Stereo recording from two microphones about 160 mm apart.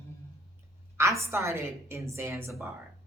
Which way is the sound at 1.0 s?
15° right (ahead or behind).